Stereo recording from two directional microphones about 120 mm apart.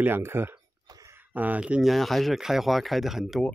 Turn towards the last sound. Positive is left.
turn(degrees=0)  # may be behind; listen again after turning